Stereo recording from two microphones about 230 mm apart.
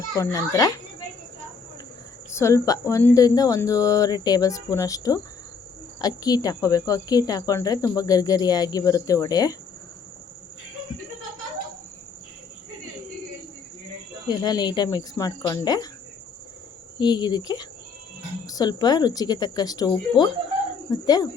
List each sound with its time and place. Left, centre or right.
0.2 s speech: centre
2.3 s speech: centre
14.3 s speech: centre
17.0 s speech: centre